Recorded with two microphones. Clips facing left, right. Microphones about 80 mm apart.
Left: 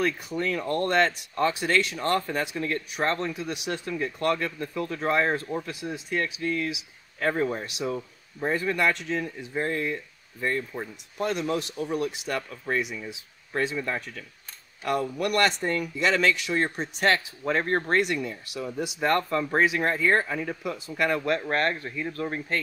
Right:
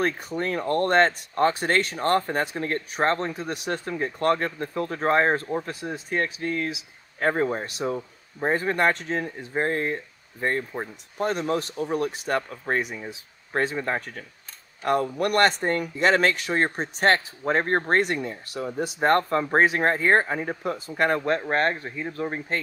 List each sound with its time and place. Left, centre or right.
0.4 s speech: right
21.3 s speech: right